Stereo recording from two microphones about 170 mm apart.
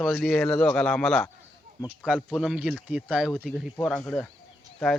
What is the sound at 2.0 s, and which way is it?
Speech, 5° right (ahead or behind).